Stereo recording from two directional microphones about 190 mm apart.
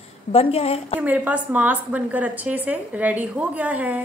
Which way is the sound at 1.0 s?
10° right (ahead or behind).